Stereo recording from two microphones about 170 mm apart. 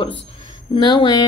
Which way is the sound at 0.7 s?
25° left (ahead or behind).